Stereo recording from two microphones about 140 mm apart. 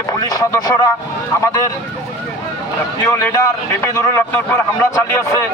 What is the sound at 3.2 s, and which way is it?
A man's voice, 20° left (ahead or behind).